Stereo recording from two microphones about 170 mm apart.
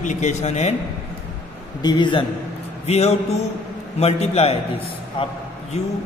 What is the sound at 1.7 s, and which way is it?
Speech, 25° left (ahead or behind).